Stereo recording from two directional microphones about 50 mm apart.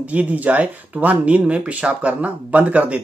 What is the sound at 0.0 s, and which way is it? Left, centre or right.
Speech, right.